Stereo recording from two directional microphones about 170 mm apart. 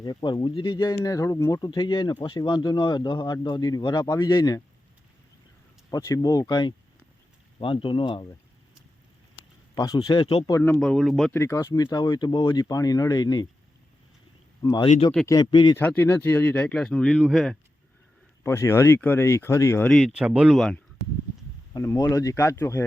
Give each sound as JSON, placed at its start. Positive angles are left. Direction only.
{"t": 0.0, "sound": "speech", "side_deg": 25}
{"t": 5.9, "sound": "speech", "side_deg": 20}
{"t": 9.7, "sound": "speech", "side_deg": 20}
{"t": 10.6, "sound": "speech", "side_deg": 5}
{"t": 11.3, "sound": "speech", "side_deg": 15}
{"t": 14.6, "sound": "speech", "side_deg": 20}
{"t": 14.8, "sound": "speech", "side_deg": 40}
{"t": 15.3, "sound": "speech", "side_deg": 25}
{"t": 15.8, "sound": "speech", "side_deg": 10}
{"t": 18.4, "sound": "speech", "side_deg": 15}
{"t": 19.9, "sound": "speech", "side_deg": 0}
{"t": 21.7, "sound": "speech", "side_deg": 20}